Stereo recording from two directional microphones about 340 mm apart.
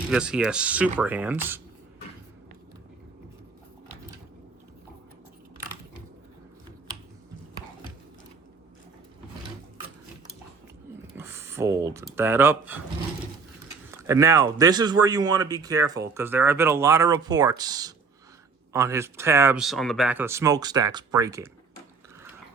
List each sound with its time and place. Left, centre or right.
0.1 s speech: centre
11.1 s speech: centre
13.9 s speech: centre